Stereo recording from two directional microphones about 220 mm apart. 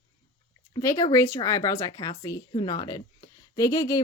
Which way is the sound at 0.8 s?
15° left (ahead or behind).